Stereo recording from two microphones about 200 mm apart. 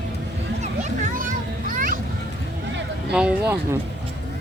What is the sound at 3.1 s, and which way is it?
Speech, 5° right (ahead or behind).